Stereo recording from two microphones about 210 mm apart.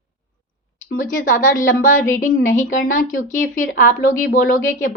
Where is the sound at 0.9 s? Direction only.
40° left (ahead or behind).